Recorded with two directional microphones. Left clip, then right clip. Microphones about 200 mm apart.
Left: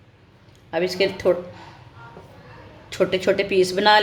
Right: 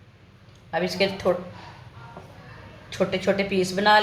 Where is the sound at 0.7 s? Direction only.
40° left (ahead or behind).